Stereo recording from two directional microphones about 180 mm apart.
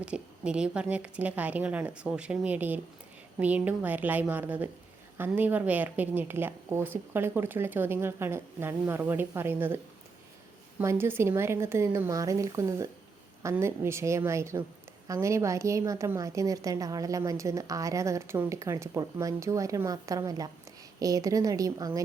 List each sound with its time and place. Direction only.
0.0 s a woman's voice: 5° right (ahead or behind)